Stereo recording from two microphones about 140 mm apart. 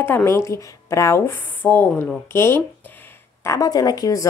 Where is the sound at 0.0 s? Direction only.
15° left (ahead or behind).